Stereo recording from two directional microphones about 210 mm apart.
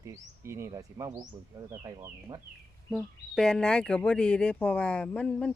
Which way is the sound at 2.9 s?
Centre (ahead or behind).